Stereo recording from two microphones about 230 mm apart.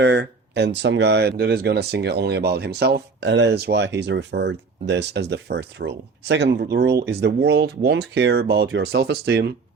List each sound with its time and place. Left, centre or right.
0.0 s speech: right